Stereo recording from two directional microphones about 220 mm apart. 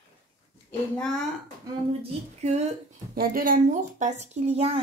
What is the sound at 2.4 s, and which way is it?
Speech, 30° right (ahead or behind).